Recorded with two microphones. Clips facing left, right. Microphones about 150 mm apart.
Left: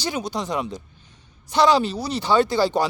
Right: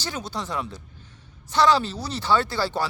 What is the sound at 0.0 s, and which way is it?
Speech, 15° left (ahead or behind).